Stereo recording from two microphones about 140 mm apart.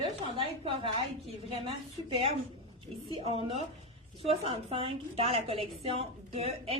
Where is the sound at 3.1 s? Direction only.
40° right (ahead or behind).